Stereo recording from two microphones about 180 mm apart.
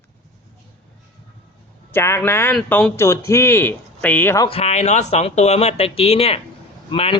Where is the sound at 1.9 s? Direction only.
15° left (ahead or behind).